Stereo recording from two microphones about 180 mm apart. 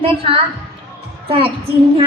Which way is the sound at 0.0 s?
30° right (ahead or behind).